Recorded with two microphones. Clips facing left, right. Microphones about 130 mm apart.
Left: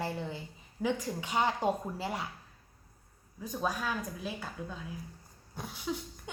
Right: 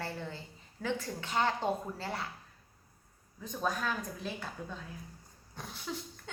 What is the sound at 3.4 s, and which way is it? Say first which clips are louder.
A woman's voice: left 1 dB; 10° left (ahead or behind).